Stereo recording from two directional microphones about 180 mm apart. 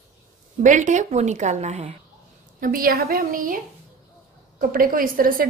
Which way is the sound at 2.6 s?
50° right (ahead or behind).